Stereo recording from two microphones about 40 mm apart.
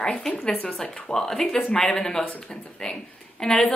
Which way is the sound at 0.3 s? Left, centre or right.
Left.